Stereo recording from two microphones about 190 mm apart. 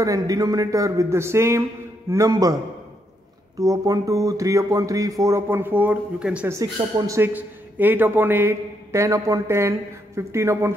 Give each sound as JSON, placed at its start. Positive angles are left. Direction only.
{"t": 0.0, "sound": "speech", "side_deg": -20}
{"t": 3.5, "sound": "speech", "side_deg": -20}